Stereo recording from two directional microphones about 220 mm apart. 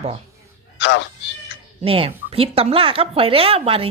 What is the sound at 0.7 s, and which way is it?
Speech, 55° left (ahead or behind).